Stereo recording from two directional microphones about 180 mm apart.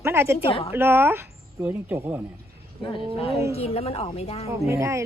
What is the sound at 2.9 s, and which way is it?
Speech, 35° left (ahead or behind).